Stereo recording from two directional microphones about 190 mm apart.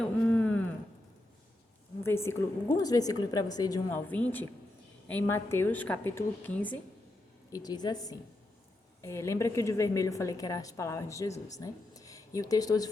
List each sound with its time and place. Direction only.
0.0 s a sound: 5° left (ahead or behind)
2.0 s a woman's voice: 15° left (ahead or behind)
7.5 s a woman's voice: 20° left (ahead or behind)